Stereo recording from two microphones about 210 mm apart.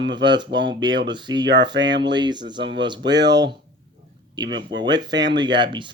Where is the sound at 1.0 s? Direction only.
20° right (ahead or behind).